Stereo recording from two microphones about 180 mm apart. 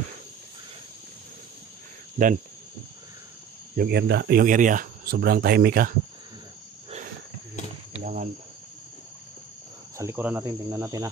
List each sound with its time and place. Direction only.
2.2 s speech: 45° right (ahead or behind)
3.7 s speech: 60° right (ahead or behind)
7.9 s insect: 45° right (ahead or behind)
9.9 s speech: 10° right (ahead or behind)